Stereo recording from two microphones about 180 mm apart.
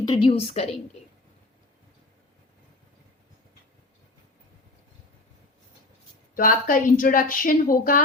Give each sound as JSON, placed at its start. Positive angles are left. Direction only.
{"t": 0.1, "sound": "a woman's voice", "side_deg": 30}
{"t": 6.3, "sound": "speech", "side_deg": 50}